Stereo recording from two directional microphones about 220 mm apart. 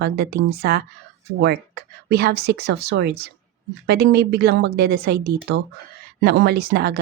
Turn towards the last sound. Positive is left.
turn(degrees=-45)  # may be behind; listen again after turning